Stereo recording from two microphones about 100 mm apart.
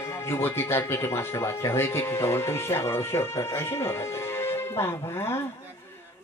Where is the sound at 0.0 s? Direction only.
25° left (ahead or behind).